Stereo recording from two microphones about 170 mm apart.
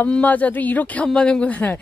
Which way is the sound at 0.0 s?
10° left (ahead or behind).